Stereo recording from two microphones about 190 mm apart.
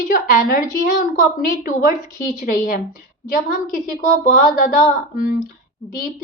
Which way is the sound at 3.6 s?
45° left (ahead or behind).